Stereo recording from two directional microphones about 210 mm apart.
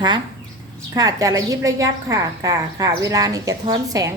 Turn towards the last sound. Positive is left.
turn(degrees=-15)  # may be behind; listen again after turning